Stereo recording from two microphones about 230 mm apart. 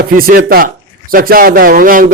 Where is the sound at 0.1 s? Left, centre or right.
Right.